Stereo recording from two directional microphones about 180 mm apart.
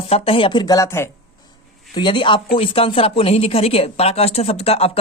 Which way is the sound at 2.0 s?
25° left (ahead or behind).